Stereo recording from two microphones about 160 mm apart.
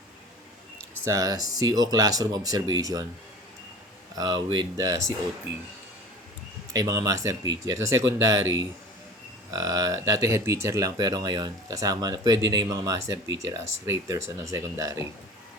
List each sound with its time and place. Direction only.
1.0 s speech: 20° right (ahead or behind)
4.1 s speech: 25° right (ahead or behind)
6.7 s speech: 20° right (ahead or behind)